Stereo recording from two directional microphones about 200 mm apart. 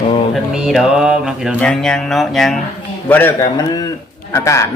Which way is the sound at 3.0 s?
10° left (ahead or behind).